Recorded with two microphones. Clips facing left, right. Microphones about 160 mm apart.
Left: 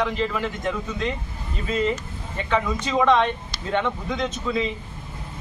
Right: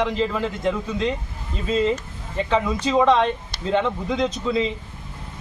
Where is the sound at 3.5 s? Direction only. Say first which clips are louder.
Right 4 dB; 55° right (ahead or behind).